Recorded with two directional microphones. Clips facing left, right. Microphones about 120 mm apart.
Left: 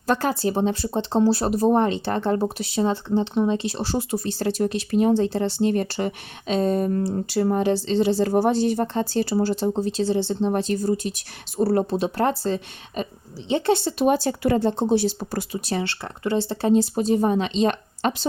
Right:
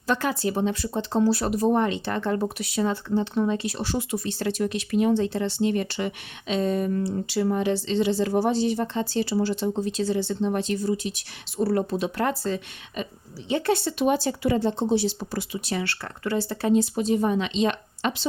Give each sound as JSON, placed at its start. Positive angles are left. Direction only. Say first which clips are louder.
{"t": 0.1, "sound": "speech", "louder": "left 3 dB", "side_deg": 35}
{"t": 14.0, "sound": "speech", "louder": "left 2 dB", "side_deg": 45}
{"t": 15.8, "sound": "speech", "louder": "left 3 dB", "side_deg": 20}